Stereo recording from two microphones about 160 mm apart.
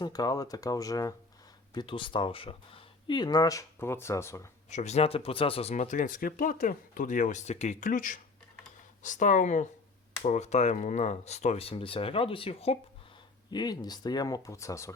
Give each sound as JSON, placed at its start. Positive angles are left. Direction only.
{"t": 0.0, "sound": "speech", "side_deg": 25}
{"t": 4.7, "sound": "speech", "side_deg": 45}